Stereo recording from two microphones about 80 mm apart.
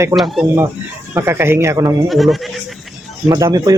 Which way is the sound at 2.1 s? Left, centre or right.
Centre.